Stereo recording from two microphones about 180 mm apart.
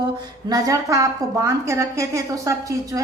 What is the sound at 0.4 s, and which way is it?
A woman's voice, 20° right (ahead or behind).